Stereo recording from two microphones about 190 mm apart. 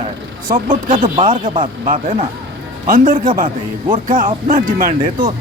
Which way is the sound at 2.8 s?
45° right (ahead or behind).